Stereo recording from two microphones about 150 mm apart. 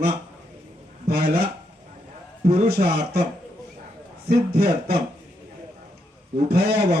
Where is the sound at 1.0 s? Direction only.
90° right.